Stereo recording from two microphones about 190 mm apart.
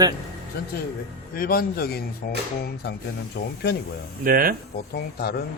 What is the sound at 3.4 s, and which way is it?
Speech, 70° left (ahead or behind).